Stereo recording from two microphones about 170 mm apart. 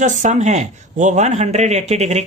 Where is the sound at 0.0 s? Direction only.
45° right (ahead or behind).